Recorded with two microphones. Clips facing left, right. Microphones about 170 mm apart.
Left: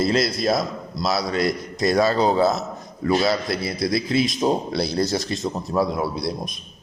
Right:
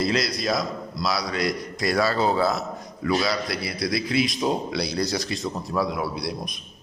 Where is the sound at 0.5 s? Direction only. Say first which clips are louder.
Left 3 dB; 25° left (ahead or behind).